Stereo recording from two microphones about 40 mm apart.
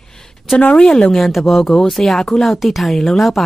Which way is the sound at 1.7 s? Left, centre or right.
Centre.